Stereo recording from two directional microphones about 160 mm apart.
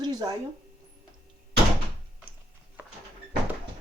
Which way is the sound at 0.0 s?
25° right (ahead or behind).